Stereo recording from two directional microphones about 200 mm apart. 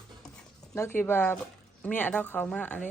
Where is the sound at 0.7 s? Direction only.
10° left (ahead or behind).